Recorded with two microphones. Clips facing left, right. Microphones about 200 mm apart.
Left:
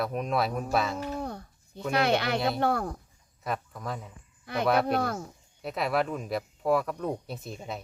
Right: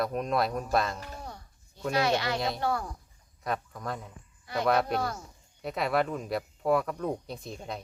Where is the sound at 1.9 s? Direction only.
60° left (ahead or behind).